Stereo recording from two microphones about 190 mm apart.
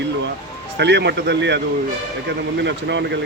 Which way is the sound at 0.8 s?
65° right (ahead or behind).